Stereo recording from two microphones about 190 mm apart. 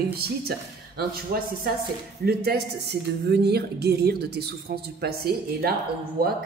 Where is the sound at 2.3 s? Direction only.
60° right (ahead or behind).